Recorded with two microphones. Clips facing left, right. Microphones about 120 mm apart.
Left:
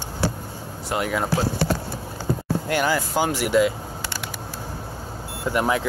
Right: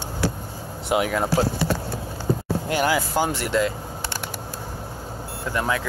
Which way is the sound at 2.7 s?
5° right (ahead or behind).